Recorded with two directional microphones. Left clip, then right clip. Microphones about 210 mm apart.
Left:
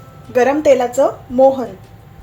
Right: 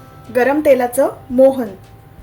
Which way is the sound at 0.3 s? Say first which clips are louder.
Left 1 dB; 5° right (ahead or behind).